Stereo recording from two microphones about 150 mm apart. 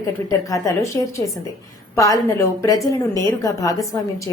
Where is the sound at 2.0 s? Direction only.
20° left (ahead or behind).